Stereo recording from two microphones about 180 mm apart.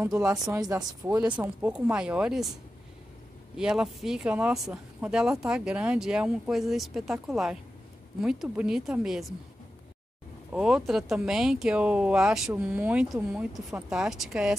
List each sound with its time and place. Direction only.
0.0 s speech: 15° right (ahead or behind)
3.5 s speech: 5° right (ahead or behind)
10.5 s speech: 5° right (ahead or behind)